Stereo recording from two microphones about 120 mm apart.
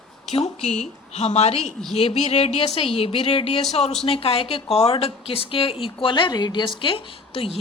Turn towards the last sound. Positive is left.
turn(degrees=50)  # may be behind; listen again after turning